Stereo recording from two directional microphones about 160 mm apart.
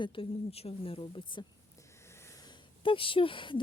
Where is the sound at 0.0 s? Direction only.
30° left (ahead or behind).